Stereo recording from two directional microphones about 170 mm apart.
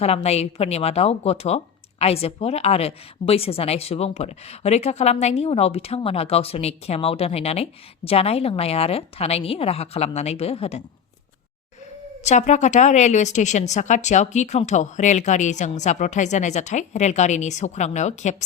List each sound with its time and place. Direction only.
0.0 s a woman's voice: 40° left (ahead or behind)
12.2 s a woman's voice: 45° left (ahead or behind)